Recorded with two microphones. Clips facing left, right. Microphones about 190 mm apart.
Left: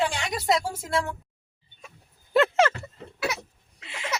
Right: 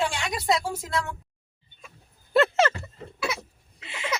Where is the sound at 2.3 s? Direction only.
10° left (ahead or behind).